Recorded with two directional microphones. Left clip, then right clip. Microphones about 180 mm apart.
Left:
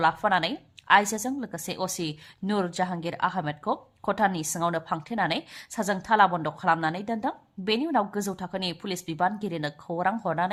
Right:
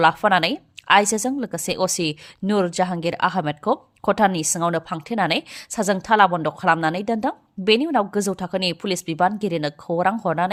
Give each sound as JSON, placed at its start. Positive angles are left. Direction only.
{"t": 0.0, "sound": "a woman's voice", "side_deg": -35}